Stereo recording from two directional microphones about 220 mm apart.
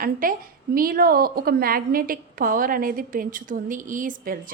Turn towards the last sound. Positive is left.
turn(degrees=-35)  # may be behind; listen again after turning